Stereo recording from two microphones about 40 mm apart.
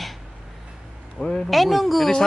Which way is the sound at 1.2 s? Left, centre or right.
Left.